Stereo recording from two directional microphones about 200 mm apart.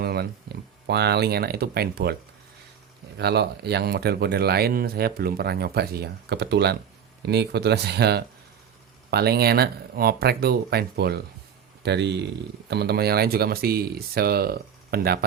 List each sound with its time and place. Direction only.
0.0 s speech: 50° right (ahead or behind)
3.2 s speech: 55° right (ahead or behind)